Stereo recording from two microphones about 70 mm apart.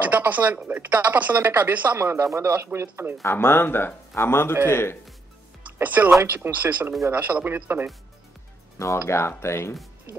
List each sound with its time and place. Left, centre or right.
0.1 s speech: right
2.0 s speech: right
3.2 s a man's voice: left
5.7 s speech: right
8.7 s a man's voice: left